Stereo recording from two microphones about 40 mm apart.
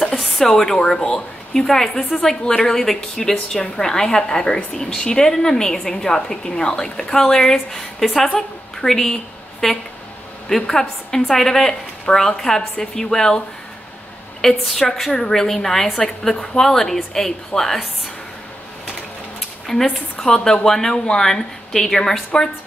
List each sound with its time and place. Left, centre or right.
0.1 s a woman's voice: centre
14.4 s a woman's voice: centre
19.6 s a woman's voice: centre